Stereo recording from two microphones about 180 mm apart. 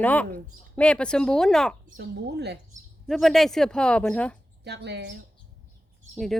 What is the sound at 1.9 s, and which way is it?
Speech, 65° right (ahead or behind).